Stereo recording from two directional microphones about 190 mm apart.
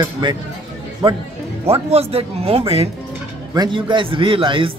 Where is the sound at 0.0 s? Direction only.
25° right (ahead or behind).